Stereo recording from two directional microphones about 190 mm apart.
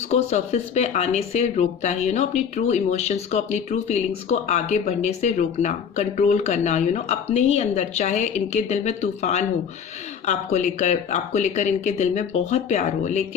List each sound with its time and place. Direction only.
0.1 s speech: 35° left (ahead or behind)